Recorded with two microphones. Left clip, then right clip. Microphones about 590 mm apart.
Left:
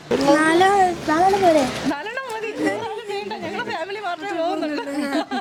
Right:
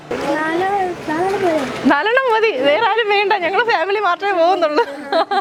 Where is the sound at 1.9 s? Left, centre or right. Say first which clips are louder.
Right 13 dB; right.